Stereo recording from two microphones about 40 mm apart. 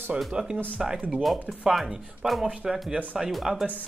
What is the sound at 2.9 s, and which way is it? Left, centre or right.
Speech, right.